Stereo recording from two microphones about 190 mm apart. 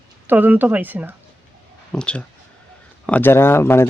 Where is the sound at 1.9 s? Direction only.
5° left (ahead or behind).